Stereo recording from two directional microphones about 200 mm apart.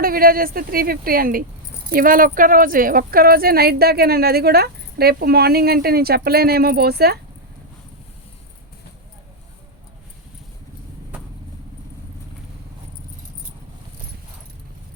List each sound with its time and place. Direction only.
0.0 s speech: 45° right (ahead or behind)